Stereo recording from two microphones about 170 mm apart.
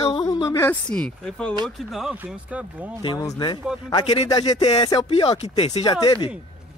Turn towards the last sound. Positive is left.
turn(degrees=25)  # may be behind; listen again after turning